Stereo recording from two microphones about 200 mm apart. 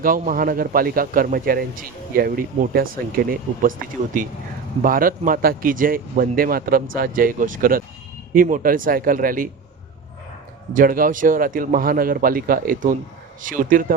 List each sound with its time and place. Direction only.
0.0 s a man's voice: 45° right (ahead or behind)
10.8 s a man's voice: 45° right (ahead or behind)